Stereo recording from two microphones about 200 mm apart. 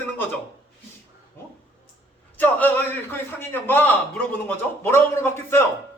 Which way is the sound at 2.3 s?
10° left (ahead or behind).